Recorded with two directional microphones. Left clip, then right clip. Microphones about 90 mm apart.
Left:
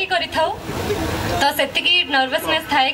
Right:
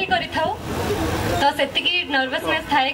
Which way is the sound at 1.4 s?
35° left (ahead or behind).